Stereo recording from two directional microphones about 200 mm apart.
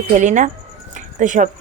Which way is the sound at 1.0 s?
40° right (ahead or behind).